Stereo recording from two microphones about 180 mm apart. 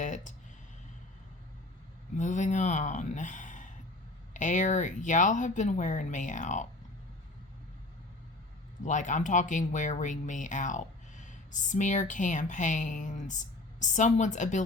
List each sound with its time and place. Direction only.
0.0 s a sound: 45° left (ahead or behind)
2.1 s speech: 40° left (ahead or behind)
8.8 s speech: 45° left (ahead or behind)